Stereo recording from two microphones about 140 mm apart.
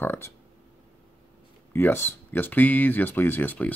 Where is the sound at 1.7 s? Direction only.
15° left (ahead or behind).